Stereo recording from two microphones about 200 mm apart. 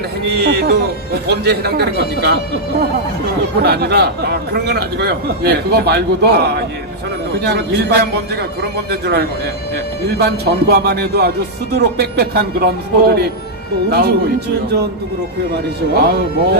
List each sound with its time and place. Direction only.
0.3 s a man's voice: 55° right (ahead or behind)
3.6 s a man's voice: 55° right (ahead or behind)
16.0 s a man's voice: 50° right (ahead or behind)